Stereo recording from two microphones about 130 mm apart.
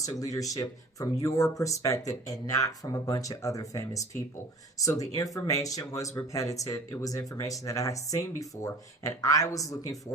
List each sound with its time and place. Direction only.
0.0 s speech: 25° left (ahead or behind)